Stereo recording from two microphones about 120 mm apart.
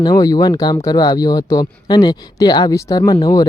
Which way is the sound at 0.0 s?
35° left (ahead or behind).